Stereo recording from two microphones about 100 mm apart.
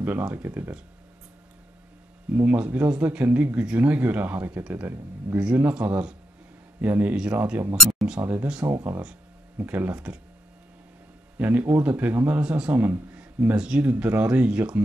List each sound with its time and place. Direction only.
0.3 s speech: 20° right (ahead or behind)
2.3 s speech: 15° right (ahead or behind)
8.6 s speech: 25° right (ahead or behind)
11.3 s speech: 20° right (ahead or behind)